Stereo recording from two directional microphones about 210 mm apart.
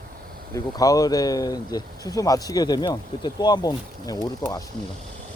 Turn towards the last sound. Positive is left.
turn(degrees=20)  # may be behind; listen again after turning